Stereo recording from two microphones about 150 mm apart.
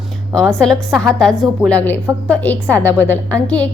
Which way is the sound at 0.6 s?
5° left (ahead or behind).